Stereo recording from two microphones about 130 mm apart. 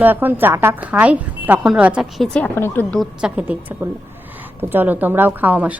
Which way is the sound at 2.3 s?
15° left (ahead or behind).